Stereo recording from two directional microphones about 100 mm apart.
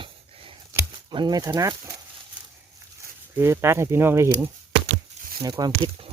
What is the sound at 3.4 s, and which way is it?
Speech, 25° right (ahead or behind).